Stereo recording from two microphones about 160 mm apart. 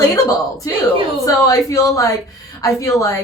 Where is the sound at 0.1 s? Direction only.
20° left (ahead or behind).